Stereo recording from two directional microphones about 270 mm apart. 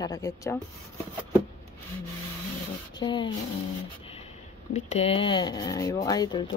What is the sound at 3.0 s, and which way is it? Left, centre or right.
Speech, centre.